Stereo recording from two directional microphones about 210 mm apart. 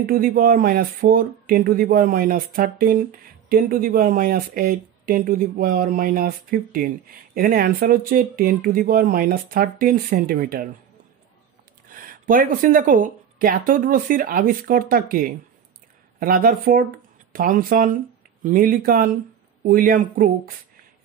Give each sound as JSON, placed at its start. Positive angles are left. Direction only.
{"t": 0.0, "sound": "speech", "side_deg": -45}
{"t": 11.9, "sound": "speech", "side_deg": -40}